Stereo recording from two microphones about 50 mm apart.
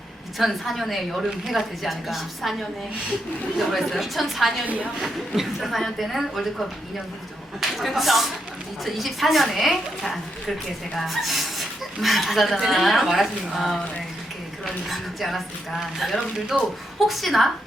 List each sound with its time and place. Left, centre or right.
0.3 s a woman's voice: centre
3.7 s a woman's voice: centre
4.6 s a woman's voice: right
5.4 s a woman's voice: centre